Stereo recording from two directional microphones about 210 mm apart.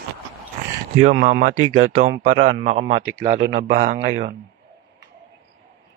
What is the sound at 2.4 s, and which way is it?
Speech, 35° right (ahead or behind).